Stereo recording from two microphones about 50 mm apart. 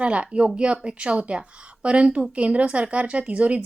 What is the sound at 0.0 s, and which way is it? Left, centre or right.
A woman's voice, right.